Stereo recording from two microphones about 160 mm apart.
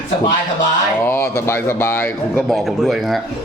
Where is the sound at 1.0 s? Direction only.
15° left (ahead or behind).